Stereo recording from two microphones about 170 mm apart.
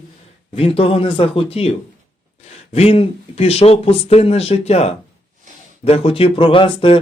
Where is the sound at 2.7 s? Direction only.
35° left (ahead or behind).